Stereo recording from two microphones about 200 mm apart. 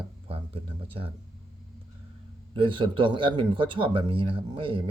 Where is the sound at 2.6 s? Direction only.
25° right (ahead or behind).